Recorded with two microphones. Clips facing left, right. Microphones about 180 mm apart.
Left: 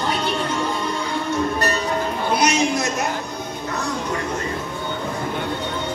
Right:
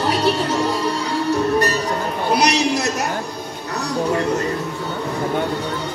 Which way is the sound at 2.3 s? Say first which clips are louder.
Right 1 dB; 35° right (ahead or behind).